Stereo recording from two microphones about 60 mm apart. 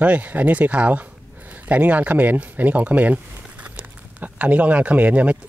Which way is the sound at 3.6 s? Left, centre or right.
Right.